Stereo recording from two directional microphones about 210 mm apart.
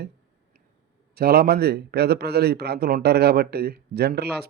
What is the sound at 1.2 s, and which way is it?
A man's voice, 45° right (ahead or behind).